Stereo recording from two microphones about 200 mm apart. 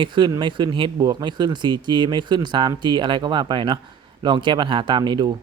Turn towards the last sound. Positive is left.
turn(degrees=-25)  # may be behind; listen again after turning